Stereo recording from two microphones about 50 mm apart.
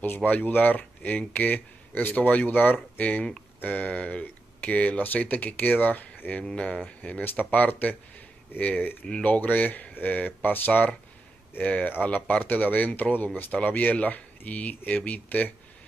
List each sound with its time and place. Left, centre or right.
0.0 s speech: left
3.0 s speech: left
6.4 s speech: left
7.0 s speech: left